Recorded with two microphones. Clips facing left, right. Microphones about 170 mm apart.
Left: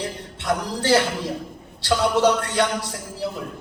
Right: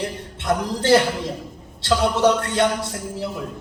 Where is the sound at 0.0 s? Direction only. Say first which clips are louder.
Right 2 dB; 20° right (ahead or behind).